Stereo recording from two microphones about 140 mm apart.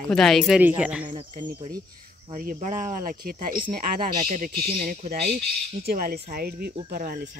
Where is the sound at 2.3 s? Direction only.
70° right (ahead or behind).